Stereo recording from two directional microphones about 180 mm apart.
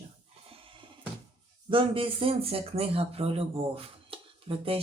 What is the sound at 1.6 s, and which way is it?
Speech, 30° right (ahead or behind).